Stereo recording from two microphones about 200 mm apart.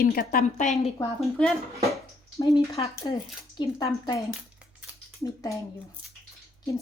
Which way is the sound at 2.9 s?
15° left (ahead or behind).